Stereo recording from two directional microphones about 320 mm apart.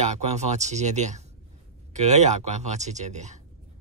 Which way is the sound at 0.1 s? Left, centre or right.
Right.